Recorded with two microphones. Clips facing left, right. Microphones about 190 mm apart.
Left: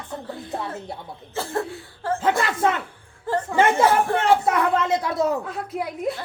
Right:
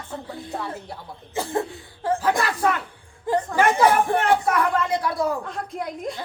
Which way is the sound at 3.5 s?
25° left (ahead or behind).